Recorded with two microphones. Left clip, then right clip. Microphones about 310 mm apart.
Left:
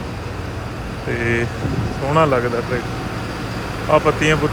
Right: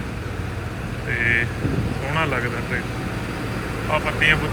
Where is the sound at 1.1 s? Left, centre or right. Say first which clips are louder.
Right 1 dB; centre.